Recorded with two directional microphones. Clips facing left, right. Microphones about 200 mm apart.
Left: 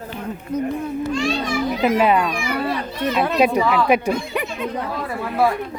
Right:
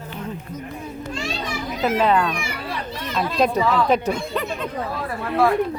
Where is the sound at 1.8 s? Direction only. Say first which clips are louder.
Left 1 dB; 15° left (ahead or behind).